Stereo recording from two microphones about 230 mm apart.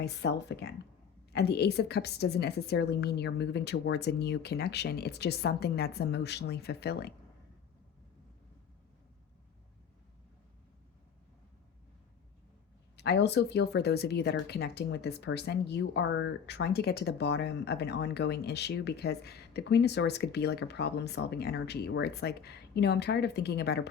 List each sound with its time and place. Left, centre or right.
0.0 s speech: left
13.0 s speech: left